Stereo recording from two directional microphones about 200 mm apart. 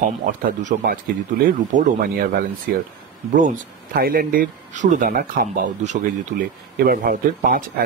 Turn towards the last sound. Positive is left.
turn(degrees=-45)  # may be behind; listen again after turning